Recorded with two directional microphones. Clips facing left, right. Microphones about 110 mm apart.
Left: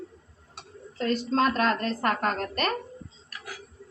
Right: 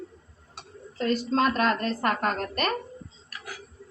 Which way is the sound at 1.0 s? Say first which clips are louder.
Even; 10° right (ahead or behind).